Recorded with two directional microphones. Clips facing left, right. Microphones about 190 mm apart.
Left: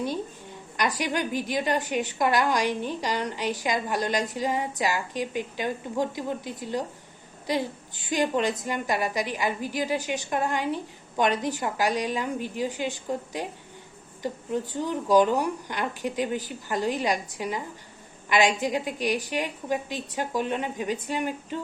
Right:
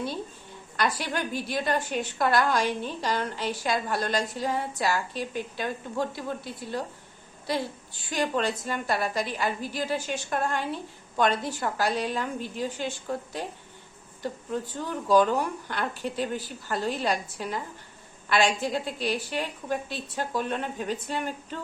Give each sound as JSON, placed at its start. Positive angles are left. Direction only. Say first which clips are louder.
{"t": 0.8, "sound": "a woman's voice", "louder": "left 2 dB", "side_deg": 15}